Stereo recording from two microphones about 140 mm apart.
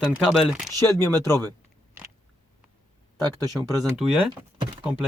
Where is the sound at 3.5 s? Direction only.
Centre (ahead or behind).